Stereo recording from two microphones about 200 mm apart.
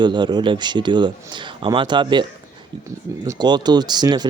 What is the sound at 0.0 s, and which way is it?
Speech, 20° right (ahead or behind).